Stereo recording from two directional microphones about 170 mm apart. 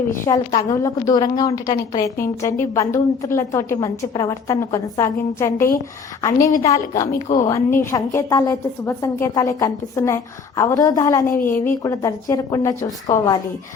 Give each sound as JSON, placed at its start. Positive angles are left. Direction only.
{"t": 0.3, "sound": "a woman's voice", "side_deg": 20}
{"t": 11.3, "sound": "speech", "side_deg": 55}
{"t": 11.8, "sound": "a woman's voice", "side_deg": 20}